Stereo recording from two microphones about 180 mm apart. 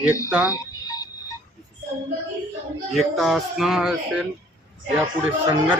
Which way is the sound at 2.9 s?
Centre (ahead or behind).